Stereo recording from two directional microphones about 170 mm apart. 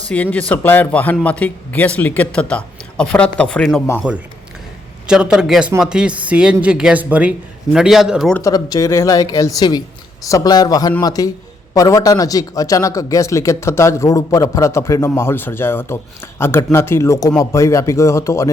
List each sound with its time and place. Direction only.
0.1 s a man's voice: 10° left (ahead or behind)
4.1 s speech: 5° right (ahead or behind)
8.4 s a man's voice: 20° left (ahead or behind)